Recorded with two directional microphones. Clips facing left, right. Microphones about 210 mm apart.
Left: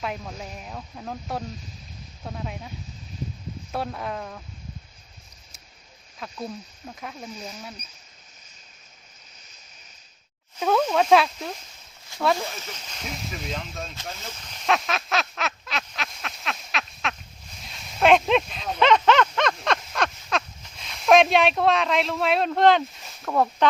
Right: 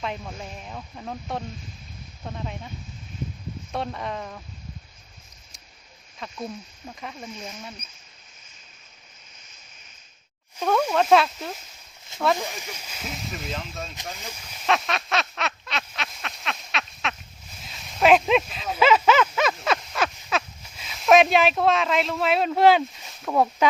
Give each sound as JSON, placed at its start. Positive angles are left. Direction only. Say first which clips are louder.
{"t": 0.0, "sound": "speech", "louder": "even", "side_deg": 5}
{"t": 6.1, "sound": "speech", "louder": "even", "side_deg": 0}
{"t": 10.6, "sound": "speech", "louder": "left 1 dB", "side_deg": 5}
{"t": 12.4, "sound": "speech", "louder": "even", "side_deg": -15}
{"t": 14.2, "sound": "duck", "louder": "even", "side_deg": -10}
{"t": 17.6, "sound": "a sound", "louder": "even", "side_deg": 0}
{"t": 23.2, "sound": "speech", "louder": "right 1 dB", "side_deg": -10}